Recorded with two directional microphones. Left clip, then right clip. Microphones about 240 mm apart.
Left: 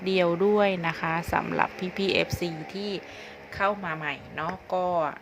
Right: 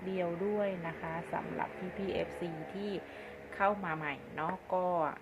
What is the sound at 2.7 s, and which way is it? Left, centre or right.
A woman's voice, left.